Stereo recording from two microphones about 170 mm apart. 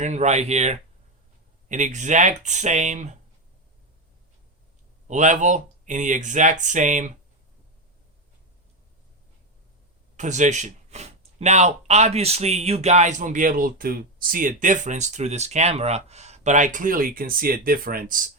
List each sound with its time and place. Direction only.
0.0 s speech: 40° right (ahead or behind)
5.0 s speech: 45° right (ahead or behind)
10.2 s speech: 45° right (ahead or behind)